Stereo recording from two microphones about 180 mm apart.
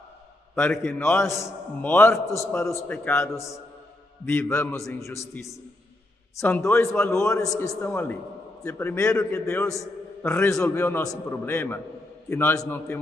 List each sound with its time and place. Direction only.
0.6 s a man's voice: 10° left (ahead or behind)
7.3 s a man's voice: 20° left (ahead or behind)